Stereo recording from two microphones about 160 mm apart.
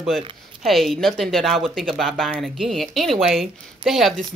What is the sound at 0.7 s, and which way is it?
Speech, centre (ahead or behind).